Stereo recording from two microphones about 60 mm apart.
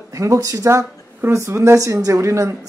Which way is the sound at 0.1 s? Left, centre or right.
Right.